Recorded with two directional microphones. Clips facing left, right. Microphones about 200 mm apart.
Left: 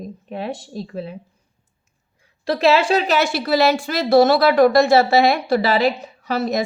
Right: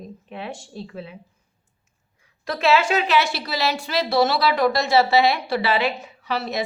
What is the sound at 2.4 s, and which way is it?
A woman's voice, 35° left (ahead or behind).